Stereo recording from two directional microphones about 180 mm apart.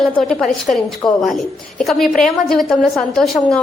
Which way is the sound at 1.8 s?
Centre (ahead or behind).